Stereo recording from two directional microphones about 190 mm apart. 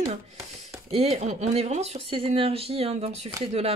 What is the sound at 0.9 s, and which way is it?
Speech, 35° right (ahead or behind).